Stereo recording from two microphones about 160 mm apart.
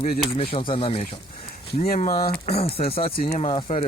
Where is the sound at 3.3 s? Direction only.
50° left (ahead or behind).